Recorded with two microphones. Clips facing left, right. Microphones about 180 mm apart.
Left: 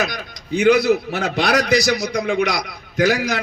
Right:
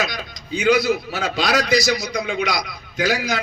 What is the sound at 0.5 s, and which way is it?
A man's voice, 65° left (ahead or behind).